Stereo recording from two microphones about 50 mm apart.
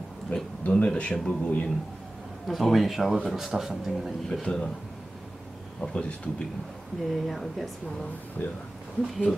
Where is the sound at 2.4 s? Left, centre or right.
Centre.